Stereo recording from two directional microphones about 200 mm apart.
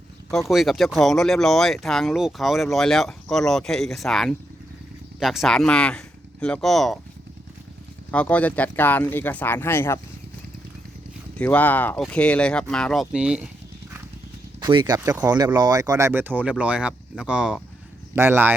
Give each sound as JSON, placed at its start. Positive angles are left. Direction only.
{"t": 0.4, "sound": "speech", "side_deg": 0}
{"t": 8.1, "sound": "speech", "side_deg": 5}
{"t": 11.3, "sound": "speech", "side_deg": 10}
{"t": 14.6, "sound": "speech", "side_deg": -20}